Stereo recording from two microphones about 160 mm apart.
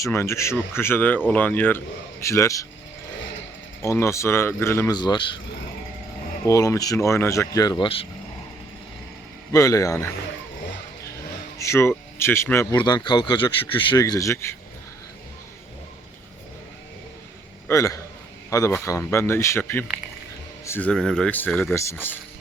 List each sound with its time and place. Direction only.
0.0 s speech: 15° left (ahead or behind)
3.8 s speech: 15° left (ahead or behind)
4.9 s speech: 30° left (ahead or behind)
6.4 s speech: 20° left (ahead or behind)
9.5 s speech: 20° left (ahead or behind)
11.5 s speech: 15° left (ahead or behind)
12.7 s speech: 30° left (ahead or behind)
17.7 s speech: 20° left (ahead or behind)